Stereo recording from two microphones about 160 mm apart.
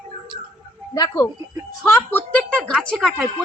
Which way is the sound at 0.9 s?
25° left (ahead or behind).